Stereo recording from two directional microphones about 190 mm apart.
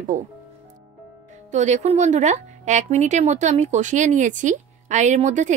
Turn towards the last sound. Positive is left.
turn(degrees=-40)  # may be behind; listen again after turning